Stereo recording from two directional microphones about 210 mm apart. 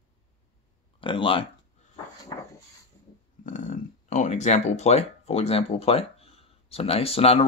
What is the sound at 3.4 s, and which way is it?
Speech, 35° left (ahead or behind).